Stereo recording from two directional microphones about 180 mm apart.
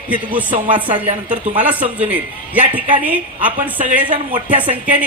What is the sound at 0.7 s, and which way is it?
Speech, 30° right (ahead or behind).